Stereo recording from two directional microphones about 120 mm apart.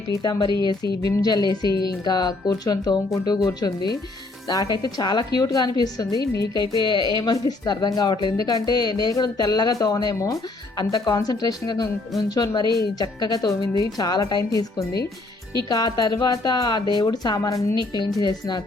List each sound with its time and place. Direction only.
0.2 s speech: 35° left (ahead or behind)
17.7 s speech: 40° left (ahead or behind)